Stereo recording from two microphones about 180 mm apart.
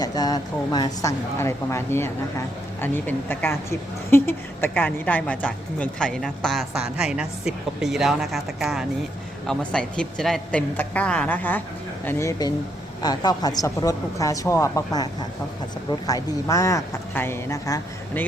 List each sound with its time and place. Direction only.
0.0 s a woman's voice: 20° left (ahead or behind)